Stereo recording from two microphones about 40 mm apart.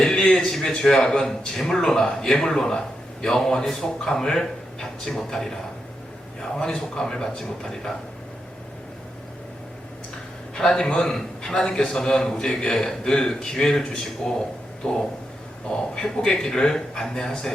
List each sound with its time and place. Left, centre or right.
0.0 s a sound: centre
0.8 s a man's voice: centre
10.5 s a man's voice: left